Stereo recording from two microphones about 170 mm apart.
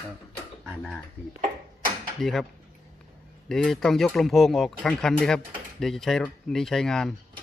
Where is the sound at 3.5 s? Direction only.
Centre (ahead or behind).